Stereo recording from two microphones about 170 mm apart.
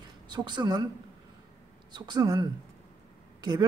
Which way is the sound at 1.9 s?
25° right (ahead or behind).